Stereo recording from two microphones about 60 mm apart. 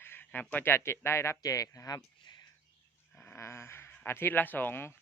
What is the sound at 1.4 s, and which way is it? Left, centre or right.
Speech, left.